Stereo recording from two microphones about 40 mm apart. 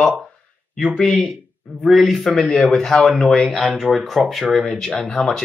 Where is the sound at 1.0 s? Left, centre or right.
Left.